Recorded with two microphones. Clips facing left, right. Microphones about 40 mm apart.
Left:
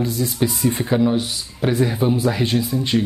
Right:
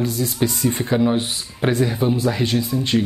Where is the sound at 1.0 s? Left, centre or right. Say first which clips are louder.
Even; centre.